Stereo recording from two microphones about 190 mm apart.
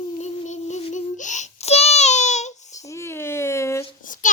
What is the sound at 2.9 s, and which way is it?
Speech, 15° left (ahead or behind).